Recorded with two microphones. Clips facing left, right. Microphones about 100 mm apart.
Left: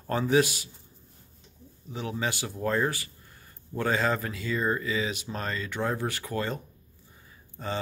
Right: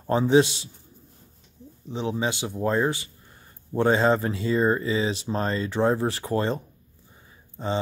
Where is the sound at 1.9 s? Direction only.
25° right (ahead or behind).